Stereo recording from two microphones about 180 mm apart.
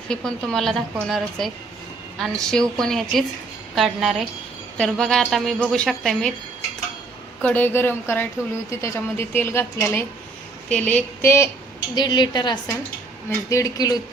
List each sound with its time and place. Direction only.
0.1 s a woman's voice: 5° left (ahead or behind)
7.4 s a woman's voice: 10° left (ahead or behind)
11.9 s a woman's voice: 25° left (ahead or behind)